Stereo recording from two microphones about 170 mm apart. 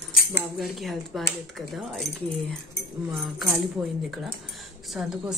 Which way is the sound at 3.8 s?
15° right (ahead or behind).